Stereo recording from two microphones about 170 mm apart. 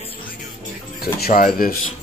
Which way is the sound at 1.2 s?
60° left (ahead or behind).